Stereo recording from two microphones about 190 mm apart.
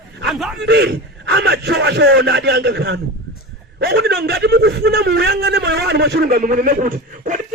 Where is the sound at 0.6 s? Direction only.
65° right (ahead or behind).